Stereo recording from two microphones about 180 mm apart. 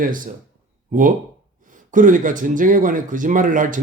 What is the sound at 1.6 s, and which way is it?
Speech, 45° right (ahead or behind).